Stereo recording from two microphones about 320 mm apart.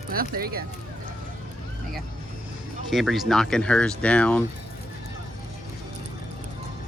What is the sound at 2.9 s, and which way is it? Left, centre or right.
Speech, centre.